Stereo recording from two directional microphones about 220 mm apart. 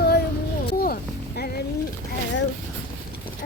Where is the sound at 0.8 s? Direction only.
45° left (ahead or behind).